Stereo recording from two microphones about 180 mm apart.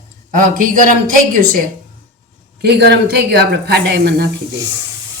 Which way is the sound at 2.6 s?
65° right (ahead or behind).